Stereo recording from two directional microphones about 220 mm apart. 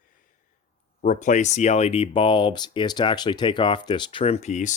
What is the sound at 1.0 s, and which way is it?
Speech, 35° left (ahead or behind).